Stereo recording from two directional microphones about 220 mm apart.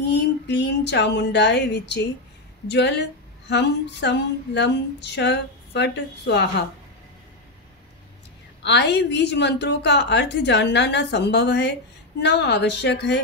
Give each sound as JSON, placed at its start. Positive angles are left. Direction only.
{"t": 0.0, "sound": "a woman's voice", "side_deg": 50}
{"t": 8.6, "sound": "a woman's voice", "side_deg": 50}